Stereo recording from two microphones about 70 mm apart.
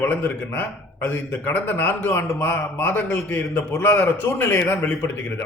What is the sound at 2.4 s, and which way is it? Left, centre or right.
A man's voice, left.